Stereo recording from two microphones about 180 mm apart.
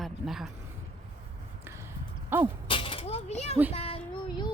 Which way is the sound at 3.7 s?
30° left (ahead or behind).